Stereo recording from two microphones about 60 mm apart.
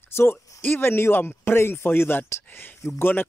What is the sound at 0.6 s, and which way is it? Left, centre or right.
Speech, left.